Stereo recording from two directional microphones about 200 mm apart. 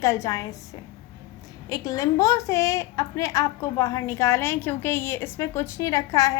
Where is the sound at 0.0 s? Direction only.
15° left (ahead or behind).